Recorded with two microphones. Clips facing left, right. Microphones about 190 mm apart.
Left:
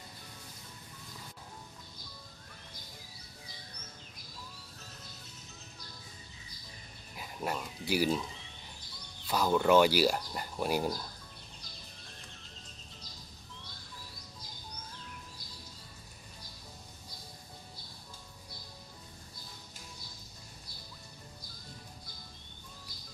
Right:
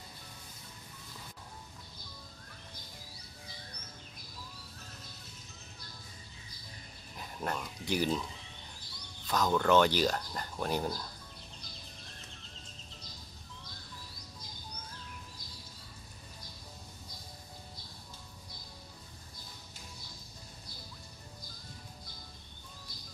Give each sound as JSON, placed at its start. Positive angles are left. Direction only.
{"t": 7.2, "sound": "speech", "side_deg": 5}
{"t": 9.3, "sound": "speech", "side_deg": 10}